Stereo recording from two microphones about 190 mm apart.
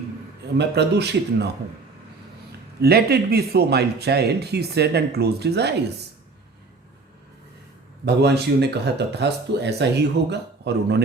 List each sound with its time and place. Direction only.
0.6 s speech: 60° right (ahead or behind)
2.8 s speech: 55° right (ahead or behind)
8.0 s speech: 60° right (ahead or behind)